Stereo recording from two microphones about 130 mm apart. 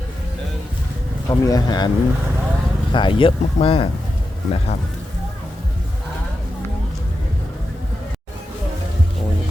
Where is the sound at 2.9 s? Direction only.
40° left (ahead or behind).